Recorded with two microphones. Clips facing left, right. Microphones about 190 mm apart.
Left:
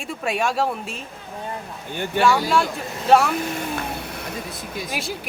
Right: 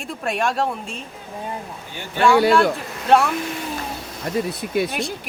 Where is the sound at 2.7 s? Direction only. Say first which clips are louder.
Even; centre (ahead or behind).